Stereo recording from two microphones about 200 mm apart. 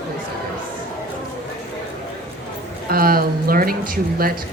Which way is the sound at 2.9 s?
50° right (ahead or behind).